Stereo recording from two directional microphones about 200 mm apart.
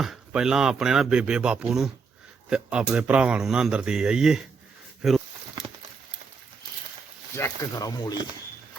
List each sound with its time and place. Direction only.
0.0 s speech: centre (ahead or behind)
7.3 s speech: 15° left (ahead or behind)